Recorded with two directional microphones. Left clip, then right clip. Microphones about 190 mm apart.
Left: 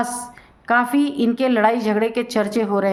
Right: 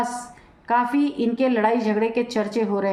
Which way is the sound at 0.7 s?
40° left (ahead or behind).